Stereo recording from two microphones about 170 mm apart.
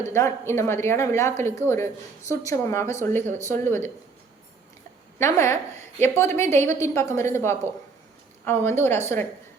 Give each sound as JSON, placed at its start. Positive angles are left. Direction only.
{"t": 0.0, "sound": "a woman's voice", "side_deg": 15}
{"t": 5.2, "sound": "a woman's voice", "side_deg": 15}